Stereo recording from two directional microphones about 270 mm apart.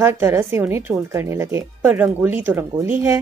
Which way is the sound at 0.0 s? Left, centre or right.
Centre.